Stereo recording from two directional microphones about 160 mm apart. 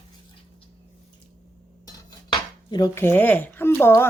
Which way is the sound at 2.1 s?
25° left (ahead or behind).